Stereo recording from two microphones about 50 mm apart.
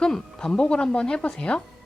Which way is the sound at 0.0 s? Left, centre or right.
Centre.